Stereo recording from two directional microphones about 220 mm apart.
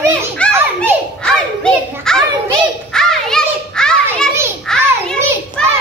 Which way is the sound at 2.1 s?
5° left (ahead or behind).